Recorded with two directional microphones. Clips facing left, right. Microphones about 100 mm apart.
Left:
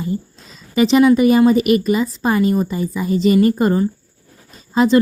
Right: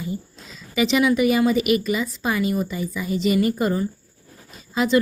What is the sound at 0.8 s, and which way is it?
A woman's voice, 40° left (ahead or behind).